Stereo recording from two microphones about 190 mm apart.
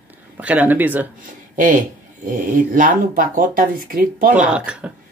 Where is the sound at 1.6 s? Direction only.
45° right (ahead or behind).